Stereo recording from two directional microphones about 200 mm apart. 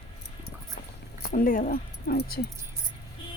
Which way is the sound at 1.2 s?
45° left (ahead or behind).